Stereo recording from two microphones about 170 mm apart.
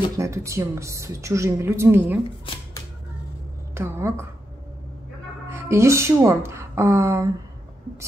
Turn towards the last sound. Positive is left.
turn(degrees=-15)  # may be behind; listen again after turning